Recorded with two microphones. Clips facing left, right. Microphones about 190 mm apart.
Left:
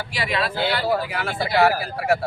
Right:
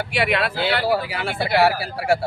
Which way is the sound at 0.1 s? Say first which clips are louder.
Right 3 dB; 60° right (ahead or behind).